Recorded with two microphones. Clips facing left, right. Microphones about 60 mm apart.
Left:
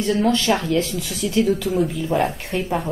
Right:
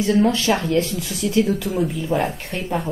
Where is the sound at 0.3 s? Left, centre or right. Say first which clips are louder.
Even; centre.